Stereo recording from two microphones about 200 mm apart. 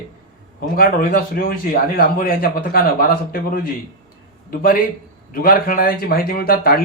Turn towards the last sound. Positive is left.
turn(degrees=50)  # may be behind; listen again after turning